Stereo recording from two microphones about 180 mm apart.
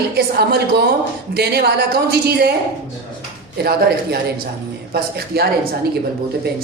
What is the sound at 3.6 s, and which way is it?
A woman's voice, 60° right (ahead or behind).